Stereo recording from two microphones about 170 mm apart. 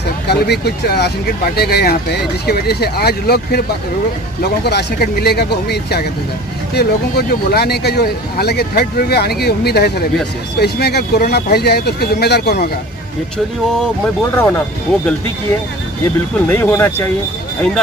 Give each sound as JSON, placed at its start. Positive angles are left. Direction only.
{"t": 0.3, "sound": "speech", "side_deg": 75}
{"t": 4.6, "sound": "speech", "side_deg": 70}
{"t": 14.3, "sound": "speech", "side_deg": 10}
{"t": 16.4, "sound": "speech", "side_deg": 10}